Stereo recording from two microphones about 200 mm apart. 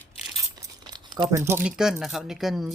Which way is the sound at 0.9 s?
20° right (ahead or behind).